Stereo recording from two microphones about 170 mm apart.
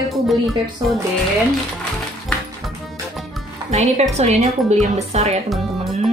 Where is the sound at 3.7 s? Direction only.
40° right (ahead or behind).